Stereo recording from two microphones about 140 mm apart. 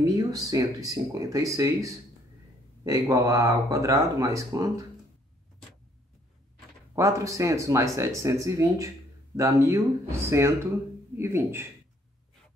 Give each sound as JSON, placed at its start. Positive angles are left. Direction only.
{"t": 0.0, "sound": "speech", "side_deg": -25}
{"t": 7.0, "sound": "speech", "side_deg": -20}